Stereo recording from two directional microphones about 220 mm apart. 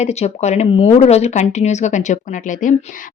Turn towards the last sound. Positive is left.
turn(degrees=35)  # may be behind; listen again after turning